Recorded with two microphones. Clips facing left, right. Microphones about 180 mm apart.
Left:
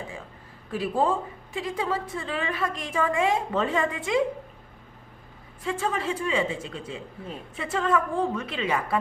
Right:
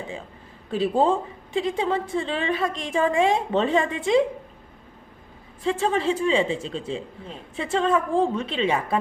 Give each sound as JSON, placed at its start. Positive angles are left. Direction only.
{"t": 0.7, "sound": "speech", "side_deg": -25}
{"t": 5.6, "sound": "speech", "side_deg": -25}